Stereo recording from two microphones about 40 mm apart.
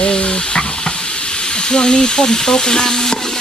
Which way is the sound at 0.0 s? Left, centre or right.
Left.